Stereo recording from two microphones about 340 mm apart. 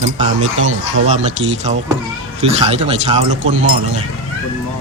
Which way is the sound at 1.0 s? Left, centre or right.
Centre.